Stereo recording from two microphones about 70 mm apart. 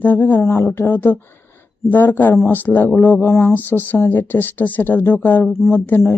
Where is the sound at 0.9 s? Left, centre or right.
Left.